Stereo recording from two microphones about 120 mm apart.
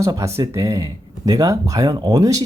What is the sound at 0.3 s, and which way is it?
Speech, 25° right (ahead or behind).